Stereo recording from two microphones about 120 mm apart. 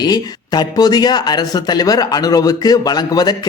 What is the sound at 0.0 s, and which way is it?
Speech, 35° left (ahead or behind).